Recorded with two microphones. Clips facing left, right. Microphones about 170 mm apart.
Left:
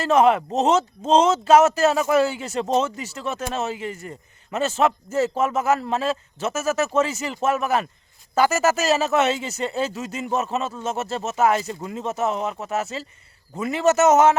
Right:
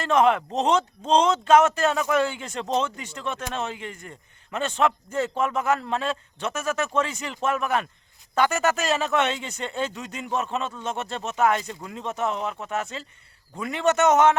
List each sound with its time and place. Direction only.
0.0 s a man's voice: 5° left (ahead or behind)